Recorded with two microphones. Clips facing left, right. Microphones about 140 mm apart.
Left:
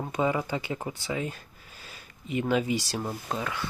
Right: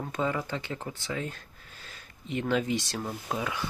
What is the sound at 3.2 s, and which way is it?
Speech, 10° right (ahead or behind).